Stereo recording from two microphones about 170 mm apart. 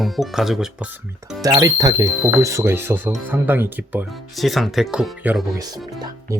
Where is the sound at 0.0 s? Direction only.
Centre (ahead or behind).